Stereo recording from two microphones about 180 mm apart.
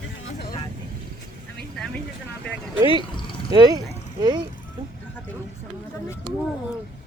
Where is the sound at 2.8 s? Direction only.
25° right (ahead or behind).